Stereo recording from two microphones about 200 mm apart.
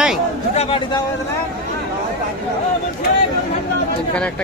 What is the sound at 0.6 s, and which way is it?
Speech, 30° left (ahead or behind).